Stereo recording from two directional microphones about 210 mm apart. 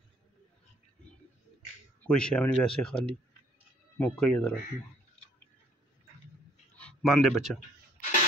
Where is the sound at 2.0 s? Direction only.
5° left (ahead or behind).